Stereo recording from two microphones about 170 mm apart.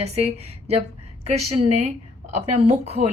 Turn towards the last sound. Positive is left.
turn(degrees=-40)  # may be behind; listen again after turning